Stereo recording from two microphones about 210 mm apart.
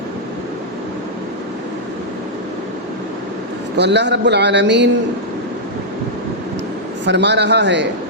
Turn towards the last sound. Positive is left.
turn(degrees=-55)  # may be behind; listen again after turning